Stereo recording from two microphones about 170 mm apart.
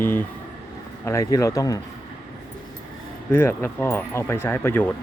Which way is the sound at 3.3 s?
10° left (ahead or behind).